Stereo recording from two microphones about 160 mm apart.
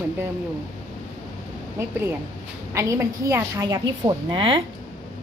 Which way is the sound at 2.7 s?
20° right (ahead or behind).